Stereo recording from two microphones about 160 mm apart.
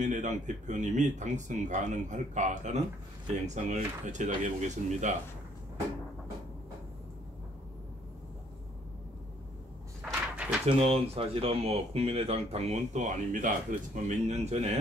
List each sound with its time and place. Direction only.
0.0 s speech: 50° right (ahead or behind)
10.3 s a sound: 10° right (ahead or behind)
10.7 s speech: 35° right (ahead or behind)